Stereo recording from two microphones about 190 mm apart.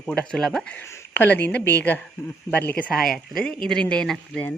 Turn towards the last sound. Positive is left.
turn(degrees=5)  # may be behind; listen again after turning